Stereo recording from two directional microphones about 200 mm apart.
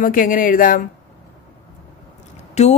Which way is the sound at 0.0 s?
45° left (ahead or behind).